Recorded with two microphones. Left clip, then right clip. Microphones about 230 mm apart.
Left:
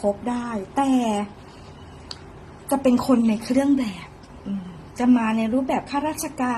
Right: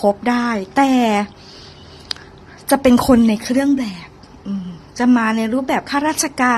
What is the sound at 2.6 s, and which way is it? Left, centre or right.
A woman's voice, right.